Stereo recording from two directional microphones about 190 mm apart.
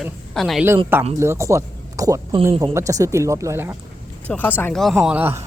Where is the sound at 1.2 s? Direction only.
15° right (ahead or behind).